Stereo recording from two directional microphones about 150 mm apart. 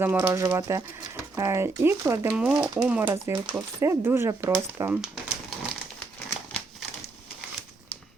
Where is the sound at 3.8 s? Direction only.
20° right (ahead or behind).